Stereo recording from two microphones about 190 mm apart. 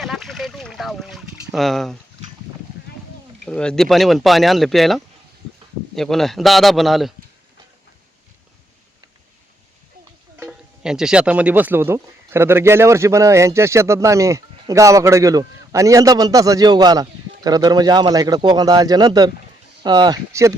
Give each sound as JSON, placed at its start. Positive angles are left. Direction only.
{"t": 0.0, "sound": "a sound", "side_deg": 0}
{"t": 3.4, "sound": "speech", "side_deg": 5}
{"t": 10.3, "sound": "speech", "side_deg": -5}